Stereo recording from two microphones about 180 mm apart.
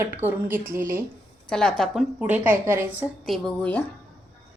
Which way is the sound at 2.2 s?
10° right (ahead or behind).